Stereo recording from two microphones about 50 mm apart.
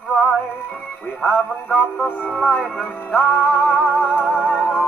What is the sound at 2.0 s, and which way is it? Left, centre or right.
Speech, left.